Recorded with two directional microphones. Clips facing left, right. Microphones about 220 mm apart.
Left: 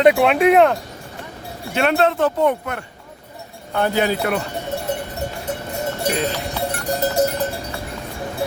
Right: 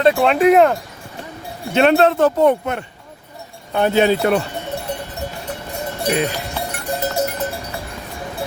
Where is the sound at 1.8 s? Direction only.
30° right (ahead or behind).